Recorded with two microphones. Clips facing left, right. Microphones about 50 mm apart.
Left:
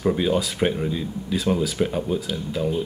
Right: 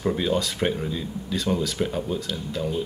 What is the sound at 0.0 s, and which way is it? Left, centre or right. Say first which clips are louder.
Speech: left 3 dB; centre.